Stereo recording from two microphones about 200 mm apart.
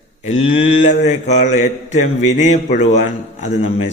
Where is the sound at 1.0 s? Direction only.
35° left (ahead or behind).